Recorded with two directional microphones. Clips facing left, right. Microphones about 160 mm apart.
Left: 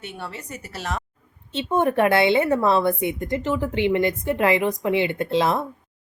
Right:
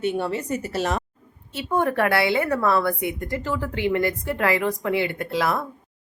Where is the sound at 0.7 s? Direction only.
10° right (ahead or behind).